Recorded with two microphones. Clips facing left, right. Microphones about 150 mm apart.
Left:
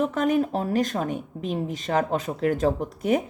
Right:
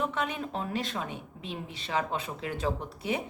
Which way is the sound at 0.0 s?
45° left (ahead or behind).